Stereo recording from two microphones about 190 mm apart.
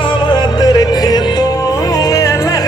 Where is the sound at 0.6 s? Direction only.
20° left (ahead or behind).